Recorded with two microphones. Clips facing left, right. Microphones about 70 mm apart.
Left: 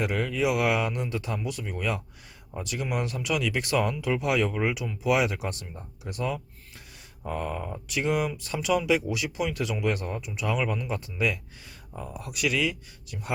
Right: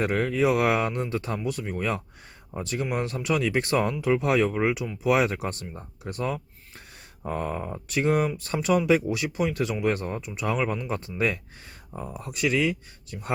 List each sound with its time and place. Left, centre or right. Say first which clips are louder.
0.0 s speech: right 3 dB; right